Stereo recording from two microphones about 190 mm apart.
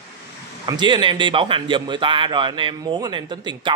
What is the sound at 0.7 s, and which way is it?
A man's voice, 25° right (ahead or behind).